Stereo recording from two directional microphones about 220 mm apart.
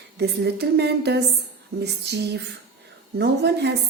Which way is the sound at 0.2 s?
50° right (ahead or behind).